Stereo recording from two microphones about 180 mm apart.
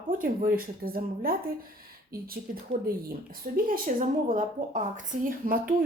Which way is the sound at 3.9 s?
45° right (ahead or behind).